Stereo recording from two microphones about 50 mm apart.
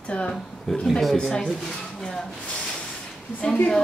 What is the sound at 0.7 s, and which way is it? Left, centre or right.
Speech, centre.